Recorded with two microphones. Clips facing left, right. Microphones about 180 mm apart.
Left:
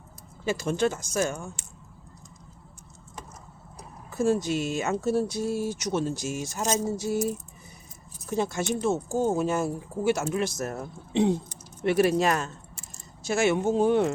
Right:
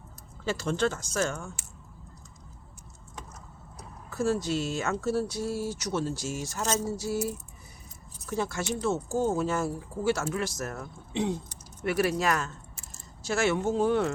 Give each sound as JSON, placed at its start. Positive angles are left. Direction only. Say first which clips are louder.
{"t": 0.4, "sound": "speech", "louder": "left 2 dB", "side_deg": 15}
{"t": 4.1, "sound": "speech", "louder": "left 3 dB", "side_deg": 15}
{"t": 8.3, "sound": "speech", "louder": "left 3 dB", "side_deg": 20}